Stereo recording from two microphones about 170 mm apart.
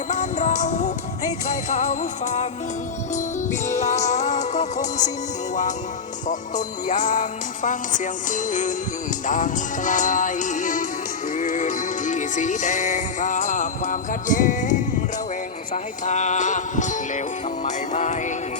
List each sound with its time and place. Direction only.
0.1 s music: 45° left (ahead or behind)
6.8 s music: 45° left (ahead or behind)